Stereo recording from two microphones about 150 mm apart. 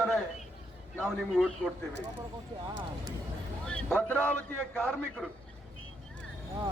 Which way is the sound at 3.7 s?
10° left (ahead or behind).